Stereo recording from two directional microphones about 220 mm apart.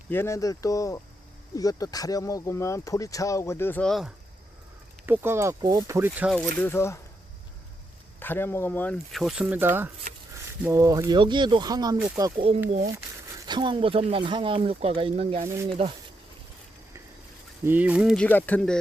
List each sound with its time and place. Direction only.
0.1 s speech: 10° left (ahead or behind)
5.0 s speech: 10° right (ahead or behind); by 7.0 s 10° left (ahead or behind)
8.2 s speech: 10° left (ahead or behind); by 12.3 s 10° right (ahead or behind)
13.4 s speech: 20° right (ahead or behind)
17.7 s speech: 5° right (ahead or behind)